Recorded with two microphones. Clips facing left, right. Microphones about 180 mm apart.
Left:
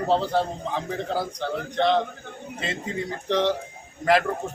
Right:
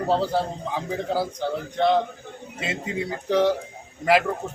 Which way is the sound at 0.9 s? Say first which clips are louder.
Right 5 dB; 5° right (ahead or behind).